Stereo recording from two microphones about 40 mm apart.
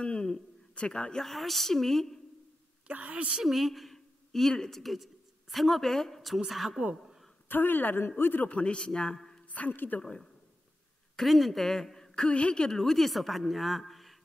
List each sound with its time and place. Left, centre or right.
0.0 s a sound: left
0.7 s speech: left
1.2 s speech: centre
2.9 s a woman's voice: right
3.4 s speech: centre
7.4 s a woman's voice: left
8.5 s speech: left
9.5 s a woman's voice: left
10.0 s speech: centre
11.2 s speech: centre
12.3 s speech: left
12.7 s speech: centre